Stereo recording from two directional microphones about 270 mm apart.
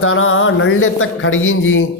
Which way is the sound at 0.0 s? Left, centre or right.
Left.